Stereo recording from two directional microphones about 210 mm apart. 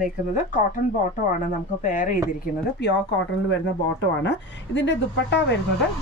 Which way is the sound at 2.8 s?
55° left (ahead or behind).